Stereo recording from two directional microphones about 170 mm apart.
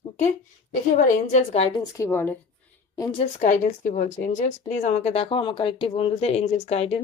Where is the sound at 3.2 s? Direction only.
45° left (ahead or behind).